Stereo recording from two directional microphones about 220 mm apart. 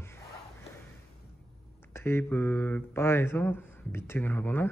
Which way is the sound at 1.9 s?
10° left (ahead or behind).